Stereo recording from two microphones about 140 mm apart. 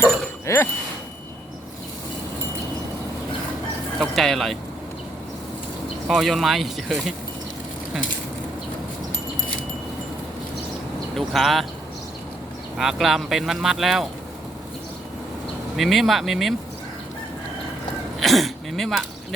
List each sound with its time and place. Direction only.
0.0 s speech: 20° left (ahead or behind)
4.0 s speech: centre (ahead or behind)
6.1 s speech: centre (ahead or behind)
11.1 s speech: centre (ahead or behind)
12.7 s speech: centre (ahead or behind)
15.7 s speech: centre (ahead or behind)
18.2 s speech: centre (ahead or behind)